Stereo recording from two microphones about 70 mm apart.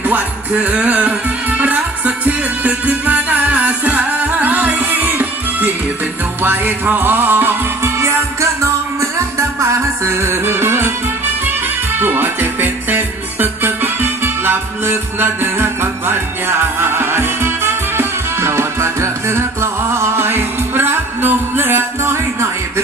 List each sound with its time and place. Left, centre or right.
0.0 s music: right
12.0 s music: right